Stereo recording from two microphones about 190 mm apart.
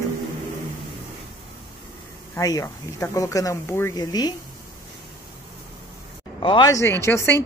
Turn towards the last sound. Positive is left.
turn(degrees=15)  # may be behind; listen again after turning